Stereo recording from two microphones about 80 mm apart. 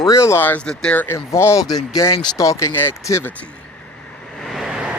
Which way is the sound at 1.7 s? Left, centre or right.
Left.